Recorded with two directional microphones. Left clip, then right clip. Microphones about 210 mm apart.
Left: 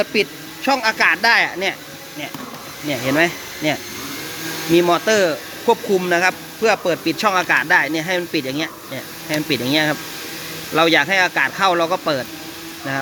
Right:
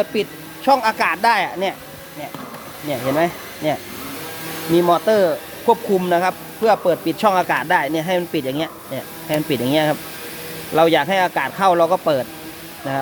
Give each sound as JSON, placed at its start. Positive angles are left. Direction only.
{"t": 0.0, "sound": "speech", "side_deg": 0}
{"t": 2.9, "sound": "speech", "side_deg": 0}